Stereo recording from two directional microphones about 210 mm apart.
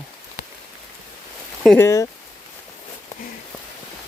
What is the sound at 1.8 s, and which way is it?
Speech, 15° left (ahead or behind).